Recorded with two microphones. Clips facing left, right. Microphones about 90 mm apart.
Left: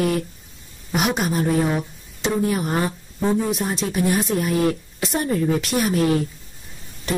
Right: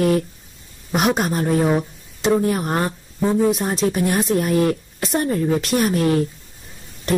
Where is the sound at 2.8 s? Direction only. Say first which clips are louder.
Right 1 dB; centre (ahead or behind).